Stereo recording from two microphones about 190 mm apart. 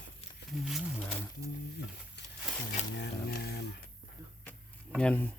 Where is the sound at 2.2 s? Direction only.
65° left (ahead or behind).